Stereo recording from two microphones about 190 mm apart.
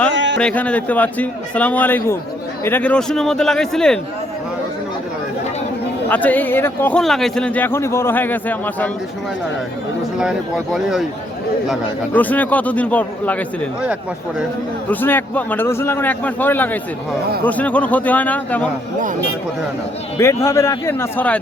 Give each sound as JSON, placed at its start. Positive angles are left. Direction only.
{"t": 0.1, "sound": "a sound", "side_deg": -70}
{"t": 0.3, "sound": "a man's voice", "side_deg": 5}
{"t": 6.1, "sound": "a man's voice", "side_deg": 10}
{"t": 10.2, "sound": "a man's voice", "side_deg": -5}
{"t": 12.1, "sound": "a man's voice", "side_deg": 10}
{"t": 14.8, "sound": "a man's voice", "side_deg": 10}
{"t": 20.1, "sound": "a man's voice", "side_deg": 15}